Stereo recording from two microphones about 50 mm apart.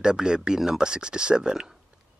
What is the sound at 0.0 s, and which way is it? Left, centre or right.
Speech, centre.